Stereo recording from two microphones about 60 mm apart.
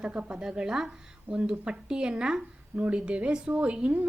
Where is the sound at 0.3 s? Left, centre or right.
Centre.